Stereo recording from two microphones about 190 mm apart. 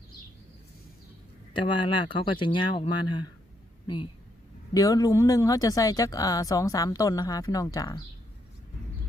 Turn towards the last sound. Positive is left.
turn(degrees=20)  # may be behind; listen again after turning